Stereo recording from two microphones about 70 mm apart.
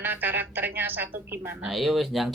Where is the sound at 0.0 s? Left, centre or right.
Right.